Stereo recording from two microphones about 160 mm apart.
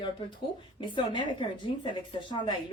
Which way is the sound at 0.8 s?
30° left (ahead or behind).